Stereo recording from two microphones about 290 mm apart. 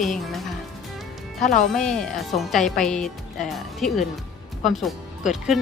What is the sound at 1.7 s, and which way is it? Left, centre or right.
Speech, centre.